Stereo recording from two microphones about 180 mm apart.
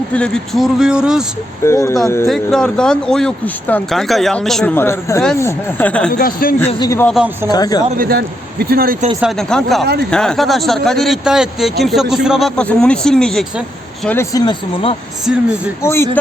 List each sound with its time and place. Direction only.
0.1 s speech: 5° left (ahead or behind)
1.6 s speech: 15° left (ahead or behind)
2.2 s speech: centre (ahead or behind)
6.1 s a man's voice: 55° left (ahead or behind)
6.7 s speech: 25° left (ahead or behind)
7.9 s a man's voice: 60° right (ahead or behind)
9.2 s speech: 5° left (ahead or behind)
14.3 s speech: 30° left (ahead or behind)
15.8 s speech: 15° left (ahead or behind)